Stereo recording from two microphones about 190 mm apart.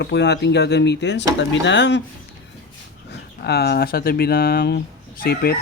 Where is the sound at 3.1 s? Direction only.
60° left (ahead or behind).